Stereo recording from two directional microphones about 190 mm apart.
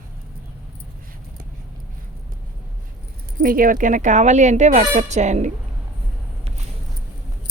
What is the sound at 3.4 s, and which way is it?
Speech, 45° right (ahead or behind).